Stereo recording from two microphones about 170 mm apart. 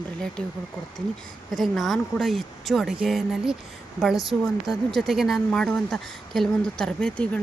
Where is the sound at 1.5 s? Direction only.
Centre (ahead or behind).